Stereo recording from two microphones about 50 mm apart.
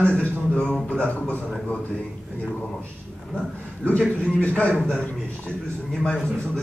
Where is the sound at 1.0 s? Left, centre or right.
Left.